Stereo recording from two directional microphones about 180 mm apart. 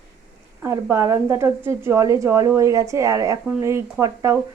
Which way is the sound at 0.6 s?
15° right (ahead or behind).